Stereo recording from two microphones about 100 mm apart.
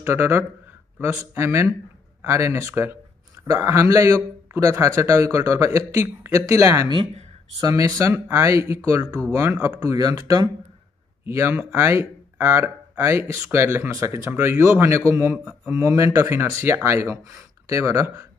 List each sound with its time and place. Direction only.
0.0 s a man's voice: 25° right (ahead or behind)
6.9 s speech: 60° right (ahead or behind)
7.6 s a man's voice: 40° right (ahead or behind)
15.3 s speech: 10° right (ahead or behind)
15.8 s speech: 30° right (ahead or behind)